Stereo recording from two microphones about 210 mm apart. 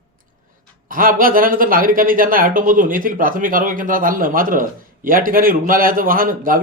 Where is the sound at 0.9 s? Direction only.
40° right (ahead or behind).